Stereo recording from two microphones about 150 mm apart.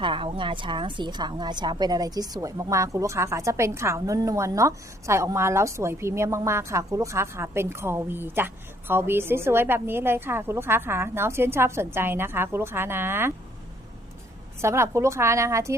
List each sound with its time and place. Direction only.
0.0 s a woman's voice: 35° right (ahead or behind); by 13.3 s 15° right (ahead or behind)
14.6 s a woman's voice: 20° right (ahead or behind)